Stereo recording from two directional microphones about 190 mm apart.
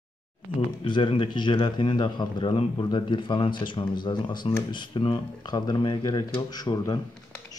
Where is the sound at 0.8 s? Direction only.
25° left (ahead or behind).